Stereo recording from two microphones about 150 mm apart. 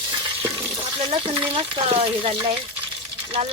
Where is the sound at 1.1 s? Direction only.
40° right (ahead or behind).